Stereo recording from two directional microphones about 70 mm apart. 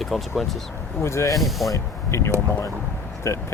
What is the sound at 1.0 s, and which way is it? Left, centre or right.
Speech, left.